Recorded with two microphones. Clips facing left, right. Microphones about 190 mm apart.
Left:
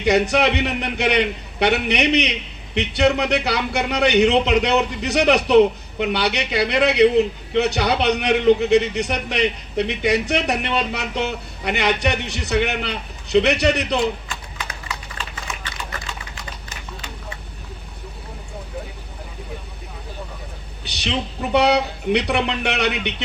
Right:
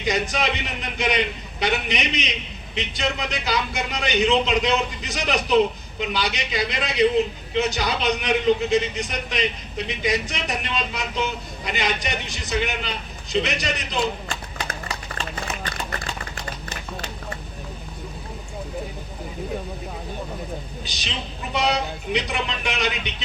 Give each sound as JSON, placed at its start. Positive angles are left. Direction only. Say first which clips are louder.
{"t": 0.0, "sound": "a man's voice", "louder": "left 7 dB", "side_deg": 65}
{"t": 20.8, "sound": "a man's voice", "louder": "left 7 dB", "side_deg": 65}